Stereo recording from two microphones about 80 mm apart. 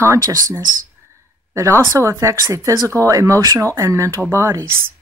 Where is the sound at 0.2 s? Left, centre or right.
Right.